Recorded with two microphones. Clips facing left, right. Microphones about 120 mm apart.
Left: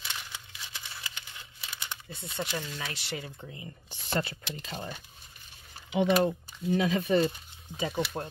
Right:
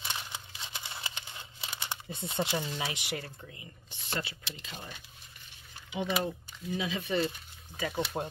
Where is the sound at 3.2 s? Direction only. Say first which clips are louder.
Left 4 dB; 25° left (ahead or behind); by 5.0 s 40° left (ahead or behind).